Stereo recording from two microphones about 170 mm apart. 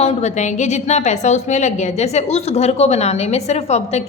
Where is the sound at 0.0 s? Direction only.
40° left (ahead or behind).